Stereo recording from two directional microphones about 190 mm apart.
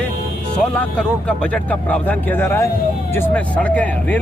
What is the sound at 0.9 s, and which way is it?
Speech, 5° left (ahead or behind).